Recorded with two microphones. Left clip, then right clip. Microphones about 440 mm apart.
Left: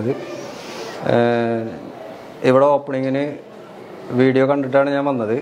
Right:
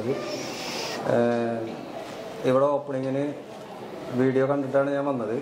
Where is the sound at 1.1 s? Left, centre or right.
Left.